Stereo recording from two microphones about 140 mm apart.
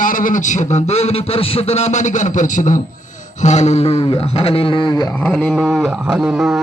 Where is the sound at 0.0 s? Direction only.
70° left (ahead or behind).